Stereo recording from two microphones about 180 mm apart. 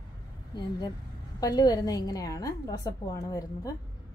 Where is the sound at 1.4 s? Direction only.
20° left (ahead or behind).